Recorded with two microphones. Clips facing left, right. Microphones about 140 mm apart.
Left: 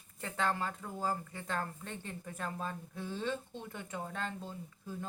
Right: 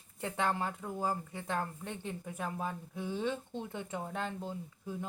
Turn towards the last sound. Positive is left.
turn(degrees=-15)  # may be behind; listen again after turning